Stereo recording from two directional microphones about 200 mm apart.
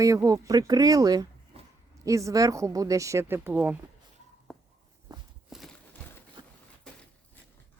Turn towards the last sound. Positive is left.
turn(degrees=5)  # may be behind; listen again after turning